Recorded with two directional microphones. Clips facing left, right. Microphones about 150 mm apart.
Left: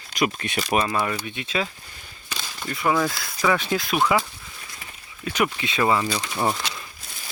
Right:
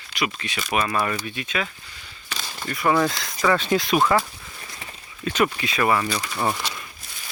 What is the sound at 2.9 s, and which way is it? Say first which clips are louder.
Speech: right 2 dB; 5° left (ahead or behind).